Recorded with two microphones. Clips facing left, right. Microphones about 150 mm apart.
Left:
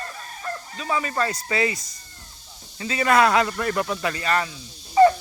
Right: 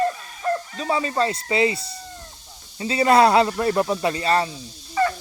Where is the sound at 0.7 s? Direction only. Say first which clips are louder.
Right 3 dB; 30° right (ahead or behind).